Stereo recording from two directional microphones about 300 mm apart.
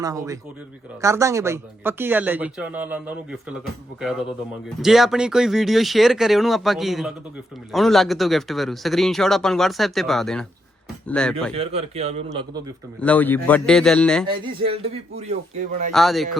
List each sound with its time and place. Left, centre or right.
0.0 s speech: centre
4.8 s speech: centre
11.5 s a man's voice: centre
13.0 s speech: centre
14.3 s a man's voice: centre
15.9 s speech: centre